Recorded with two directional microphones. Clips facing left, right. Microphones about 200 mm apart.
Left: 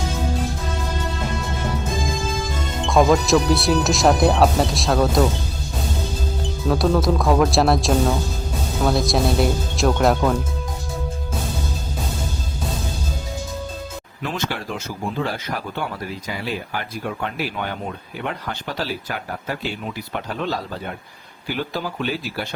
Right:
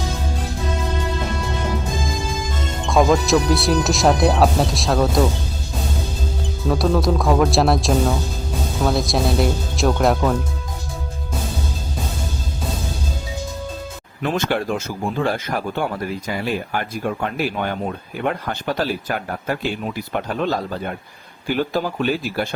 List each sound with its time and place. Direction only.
2.8 s speech: centre (ahead or behind)
6.7 s speech: centre (ahead or behind)
14.2 s speech: 50° right (ahead or behind)
17.2 s speech: 50° right (ahead or behind)
21.5 s speech: 45° right (ahead or behind)